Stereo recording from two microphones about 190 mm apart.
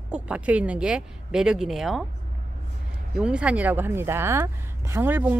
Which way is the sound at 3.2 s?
5° right (ahead or behind).